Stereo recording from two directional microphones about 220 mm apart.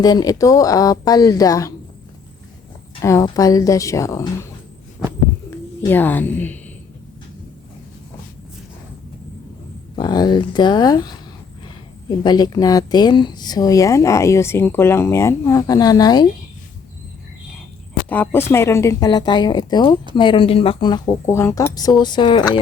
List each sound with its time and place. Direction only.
0.0 s a woman's voice: 20° left (ahead or behind)
3.0 s a woman's voice: 15° left (ahead or behind)
5.5 s speech: 10° left (ahead or behind)
9.9 s a woman's voice: 20° left (ahead or behind)
18.1 s a woman's voice: 10° left (ahead or behind)